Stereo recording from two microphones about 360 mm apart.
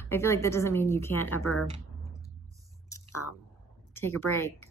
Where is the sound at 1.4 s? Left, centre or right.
Left.